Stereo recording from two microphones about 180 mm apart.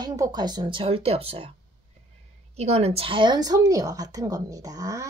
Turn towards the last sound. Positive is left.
turn(degrees=-20)  # may be behind; listen again after turning